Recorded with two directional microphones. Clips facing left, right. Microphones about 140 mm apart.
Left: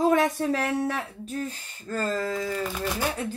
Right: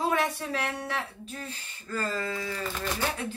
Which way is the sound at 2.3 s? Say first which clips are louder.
Left 5 dB; 40° left (ahead or behind).